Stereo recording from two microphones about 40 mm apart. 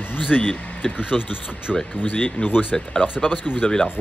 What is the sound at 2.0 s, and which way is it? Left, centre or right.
Speech, left.